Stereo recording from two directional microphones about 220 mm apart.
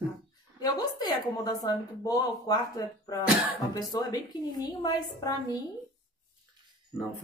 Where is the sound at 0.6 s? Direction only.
15° left (ahead or behind).